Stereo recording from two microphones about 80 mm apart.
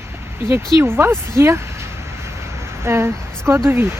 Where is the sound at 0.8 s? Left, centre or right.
Right.